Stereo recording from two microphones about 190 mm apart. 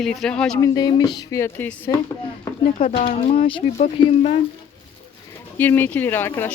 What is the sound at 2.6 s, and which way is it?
Speech, 45° left (ahead or behind).